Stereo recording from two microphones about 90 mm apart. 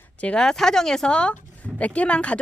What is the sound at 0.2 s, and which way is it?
Speech, 10° left (ahead or behind).